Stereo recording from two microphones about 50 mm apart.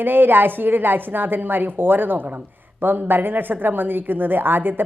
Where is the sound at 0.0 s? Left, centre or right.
Right.